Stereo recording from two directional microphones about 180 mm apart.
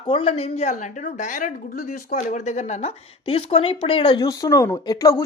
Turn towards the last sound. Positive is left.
turn(degrees=20)  # may be behind; listen again after turning